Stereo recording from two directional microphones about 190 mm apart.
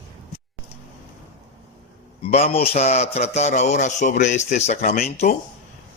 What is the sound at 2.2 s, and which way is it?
A man's voice, 35° left (ahead or behind).